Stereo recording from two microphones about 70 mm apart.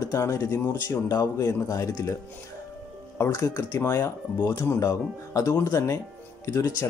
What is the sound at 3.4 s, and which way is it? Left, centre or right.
Speech, left.